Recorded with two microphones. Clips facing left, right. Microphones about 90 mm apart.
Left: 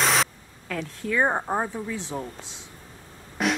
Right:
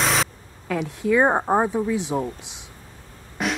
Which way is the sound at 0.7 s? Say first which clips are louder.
Right 7 dB; 15° right (ahead or behind).